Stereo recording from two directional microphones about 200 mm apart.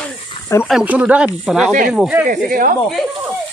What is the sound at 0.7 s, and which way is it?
Speech, 5° right (ahead or behind).